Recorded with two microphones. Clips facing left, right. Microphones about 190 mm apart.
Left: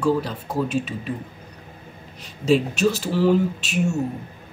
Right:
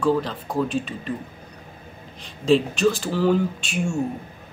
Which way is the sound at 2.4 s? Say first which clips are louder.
Right 1 dB; 5° left (ahead or behind).